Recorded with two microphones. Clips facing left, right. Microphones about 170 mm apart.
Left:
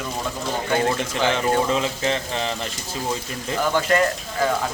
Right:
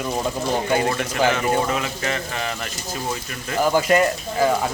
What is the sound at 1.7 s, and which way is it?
Speech, 25° left (ahead or behind).